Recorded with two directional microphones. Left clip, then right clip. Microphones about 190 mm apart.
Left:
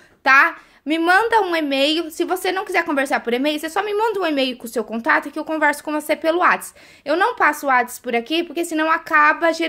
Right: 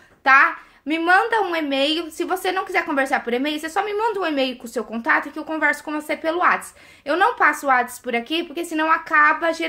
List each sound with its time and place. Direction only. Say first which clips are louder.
0.2 s a child's voice: left 1 dB; 40° left (ahead or behind)